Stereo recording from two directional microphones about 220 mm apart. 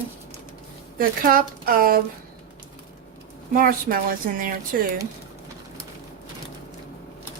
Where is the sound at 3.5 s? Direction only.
40° right (ahead or behind).